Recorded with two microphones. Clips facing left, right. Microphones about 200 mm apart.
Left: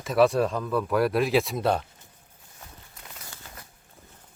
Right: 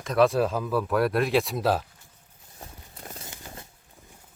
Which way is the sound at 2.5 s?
35° right (ahead or behind).